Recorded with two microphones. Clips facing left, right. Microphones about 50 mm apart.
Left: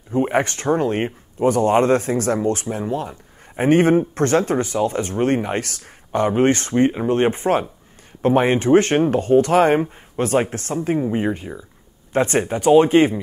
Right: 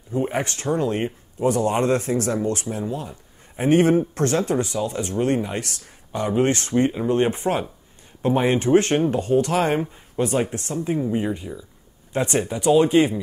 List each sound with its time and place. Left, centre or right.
0.1 s speech: left
2.9 s speech: left
6.4 s speech: left
11.0 s speech: left